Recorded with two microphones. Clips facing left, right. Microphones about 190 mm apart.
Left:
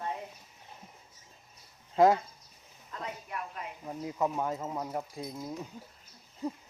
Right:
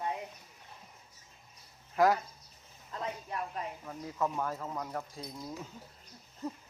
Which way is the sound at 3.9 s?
20° left (ahead or behind).